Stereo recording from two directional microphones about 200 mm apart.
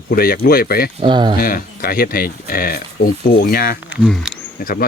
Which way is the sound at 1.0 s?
25° right (ahead or behind).